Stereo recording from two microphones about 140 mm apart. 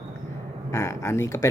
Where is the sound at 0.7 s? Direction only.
20° left (ahead or behind).